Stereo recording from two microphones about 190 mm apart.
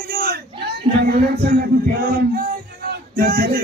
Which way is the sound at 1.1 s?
55° right (ahead or behind).